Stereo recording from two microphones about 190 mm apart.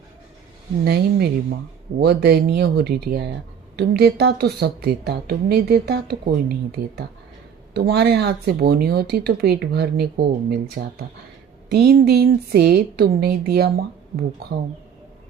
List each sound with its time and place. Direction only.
0.9 s a woman's voice: 55° right (ahead or behind)